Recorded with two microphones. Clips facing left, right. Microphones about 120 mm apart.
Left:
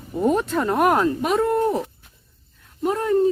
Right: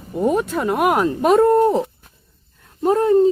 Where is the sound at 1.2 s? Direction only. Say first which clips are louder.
Right 7 dB; 45° right (ahead or behind).